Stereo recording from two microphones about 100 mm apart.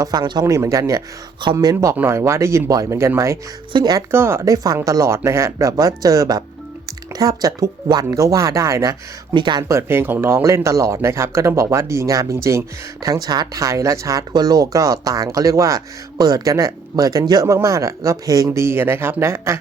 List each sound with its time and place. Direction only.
0.0 s speech: 45° right (ahead or behind)
0.4 s speech: 30° right (ahead or behind)
1.7 s speech: 25° right (ahead or behind)
3.7 s speech: 50° right (ahead or behind)
4.1 s speech: 25° right (ahead or behind)
4.5 s speech: 35° right (ahead or behind)
9.3 s speech: 50° right (ahead or behind)
9.6 s speech: 25° right (ahead or behind)